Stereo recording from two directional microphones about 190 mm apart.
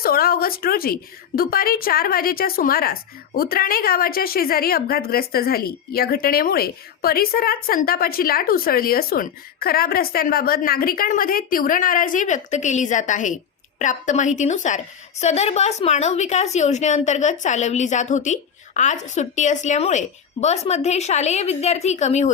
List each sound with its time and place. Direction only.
0.0 s a woman's voice: 50° left (ahead or behind)